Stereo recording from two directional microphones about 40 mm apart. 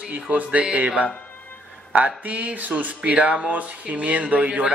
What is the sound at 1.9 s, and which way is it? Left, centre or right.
Speech, right.